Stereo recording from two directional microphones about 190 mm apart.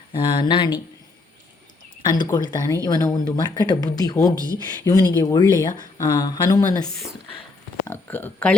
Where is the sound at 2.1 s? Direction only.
20° left (ahead or behind).